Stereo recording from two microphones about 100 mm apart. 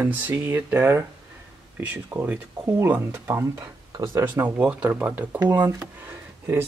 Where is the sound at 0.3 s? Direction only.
20° right (ahead or behind).